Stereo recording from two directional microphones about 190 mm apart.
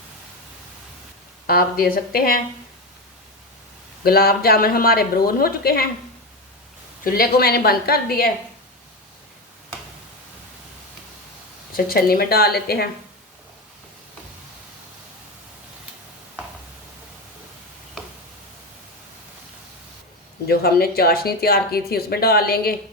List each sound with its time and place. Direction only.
1.5 s speech: 50° left (ahead or behind)
4.0 s speech: 55° left (ahead or behind)
7.0 s speech: 50° left (ahead or behind)
11.9 s speech: 50° left (ahead or behind)
20.5 s speech: 55° left (ahead or behind)